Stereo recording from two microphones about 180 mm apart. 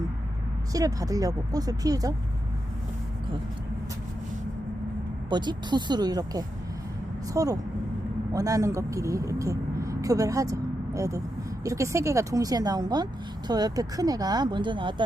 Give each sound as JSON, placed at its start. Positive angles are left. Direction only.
{"t": 0.7, "sound": "speech", "side_deg": -20}
{"t": 5.3, "sound": "speech", "side_deg": -25}